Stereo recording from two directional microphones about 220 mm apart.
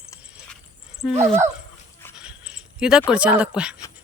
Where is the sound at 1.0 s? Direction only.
Centre (ahead or behind).